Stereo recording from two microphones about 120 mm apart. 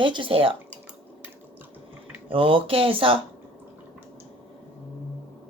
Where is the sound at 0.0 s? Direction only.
45° right (ahead or behind).